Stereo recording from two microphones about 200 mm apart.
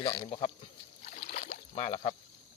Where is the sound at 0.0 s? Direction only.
20° left (ahead or behind).